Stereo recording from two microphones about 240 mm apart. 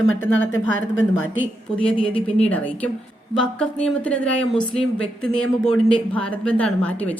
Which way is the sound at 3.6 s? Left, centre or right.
Centre.